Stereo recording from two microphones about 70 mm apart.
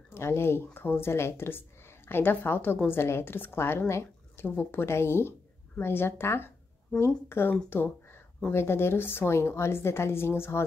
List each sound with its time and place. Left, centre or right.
0.1 s a woman's voice: left